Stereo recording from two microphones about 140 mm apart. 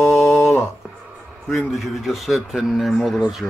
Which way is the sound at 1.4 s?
Centre (ahead or behind).